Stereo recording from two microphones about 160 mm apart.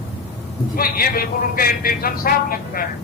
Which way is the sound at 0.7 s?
65° left (ahead or behind).